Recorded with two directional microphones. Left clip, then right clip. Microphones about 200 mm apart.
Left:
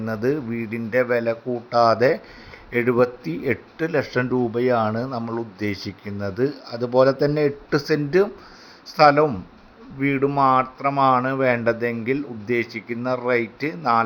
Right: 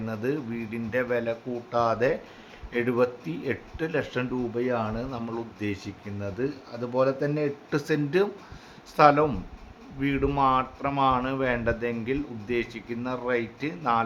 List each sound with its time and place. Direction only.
0.0 s speech: 15° left (ahead or behind)
4.5 s speech: 30° left (ahead or behind)
7.7 s speech: 15° left (ahead or behind)